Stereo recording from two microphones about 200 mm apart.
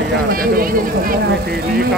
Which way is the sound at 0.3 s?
45° right (ahead or behind).